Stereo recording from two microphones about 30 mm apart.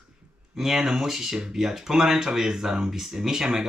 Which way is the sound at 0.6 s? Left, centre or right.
Centre.